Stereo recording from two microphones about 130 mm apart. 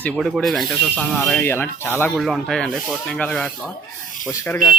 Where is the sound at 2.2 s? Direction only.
Centre (ahead or behind).